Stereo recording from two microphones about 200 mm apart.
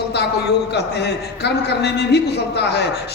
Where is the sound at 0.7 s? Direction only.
55° left (ahead or behind).